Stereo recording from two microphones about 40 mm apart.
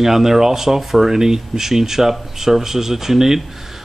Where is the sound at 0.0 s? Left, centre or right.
Centre.